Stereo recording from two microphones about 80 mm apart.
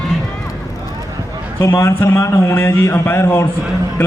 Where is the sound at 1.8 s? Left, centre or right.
Left.